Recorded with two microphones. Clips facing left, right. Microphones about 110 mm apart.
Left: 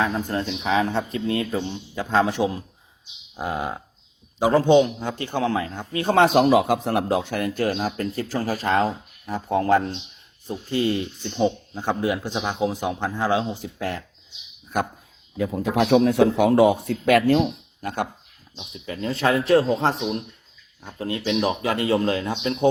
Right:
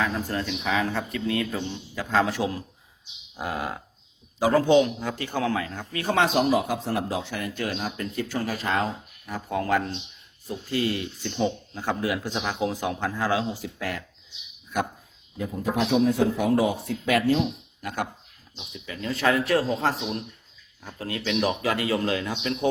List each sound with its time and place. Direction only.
0.0 s speech: 30° left (ahead or behind)
6.1 s speech: 45° left (ahead or behind)
6.4 s speech: 70° left (ahead or behind); by 14.0 s 30° left (ahead or behind)
14.7 s speech: 40° left (ahead or behind)
15.4 s speech: 90° left; by 17.4 s 60° left (ahead or behind)
17.4 s speech: 30° left (ahead or behind)